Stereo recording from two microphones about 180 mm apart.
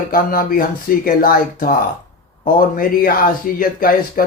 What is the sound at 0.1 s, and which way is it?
Speech, 50° left (ahead or behind).